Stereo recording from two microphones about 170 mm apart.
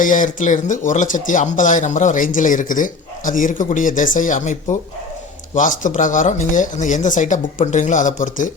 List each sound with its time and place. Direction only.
0.0 s speech: 50° left (ahead or behind)
5.5 s speech: 50° left (ahead or behind)